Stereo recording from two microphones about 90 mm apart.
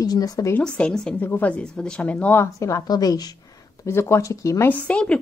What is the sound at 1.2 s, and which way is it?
Speech, 20° left (ahead or behind).